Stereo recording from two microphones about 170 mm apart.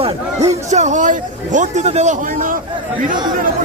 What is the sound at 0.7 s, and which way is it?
A man's voice, 45° right (ahead or behind).